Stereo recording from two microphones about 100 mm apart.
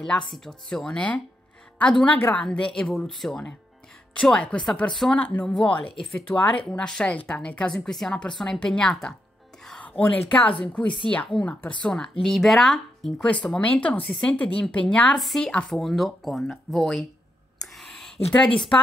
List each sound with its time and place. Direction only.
0.3 s speech: 5° left (ahead or behind)
5.2 s speech: 15° left (ahead or behind)
15.1 s speech: centre (ahead or behind)
17.7 s a sound: 5° left (ahead or behind)